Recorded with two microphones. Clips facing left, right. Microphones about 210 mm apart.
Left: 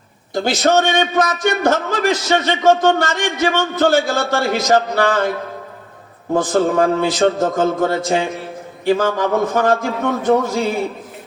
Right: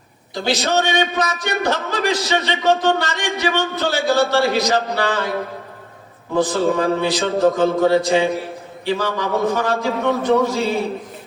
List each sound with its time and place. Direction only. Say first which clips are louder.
0.3 s a man's voice: left 4 dB; 50° left (ahead or behind)
6.3 s a man's voice: left 2 dB; 50° left (ahead or behind)